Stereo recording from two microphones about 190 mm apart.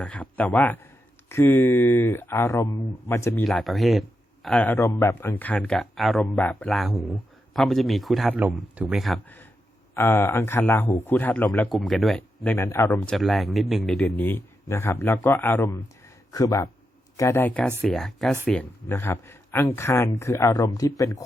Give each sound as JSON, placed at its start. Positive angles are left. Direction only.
{"t": 0.0, "sound": "speech", "side_deg": 5}
{"t": 3.4, "sound": "speech", "side_deg": 0}